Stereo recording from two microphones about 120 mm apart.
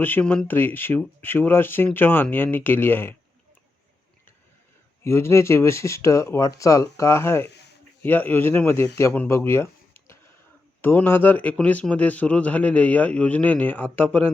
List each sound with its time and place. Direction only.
0.0 s a man's voice: 15° left (ahead or behind)
5.0 s a man's voice: 20° left (ahead or behind)